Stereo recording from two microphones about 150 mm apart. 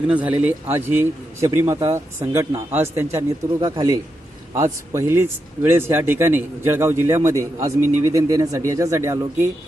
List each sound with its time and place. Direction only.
0.1 s a man's voice: 10° right (ahead or behind)